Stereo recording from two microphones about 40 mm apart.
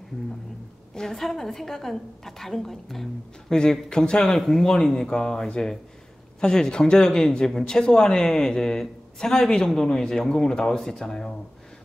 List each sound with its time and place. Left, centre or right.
0.9 s speech: centre
3.9 s speech: centre
4.4 s speech: centre